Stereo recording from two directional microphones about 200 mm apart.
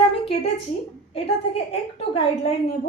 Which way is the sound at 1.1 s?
30° left (ahead or behind).